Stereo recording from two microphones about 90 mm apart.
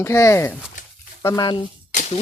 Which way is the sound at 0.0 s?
35° left (ahead or behind).